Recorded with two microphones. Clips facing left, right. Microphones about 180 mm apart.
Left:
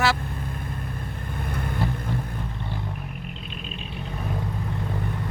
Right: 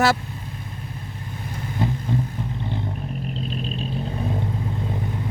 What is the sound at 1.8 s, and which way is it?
Vehicle, 20° right (ahead or behind).